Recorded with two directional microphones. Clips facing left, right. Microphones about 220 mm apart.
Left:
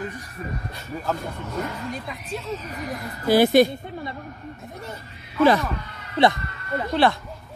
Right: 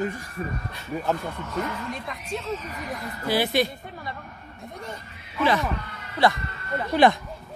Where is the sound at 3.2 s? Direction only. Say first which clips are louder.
Left 8 dB; 45° left (ahead or behind).